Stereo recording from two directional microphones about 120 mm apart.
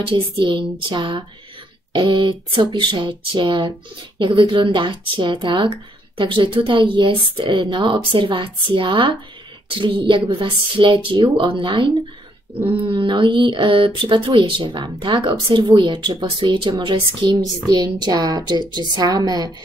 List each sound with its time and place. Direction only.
0.1 s speech: 45° right (ahead or behind)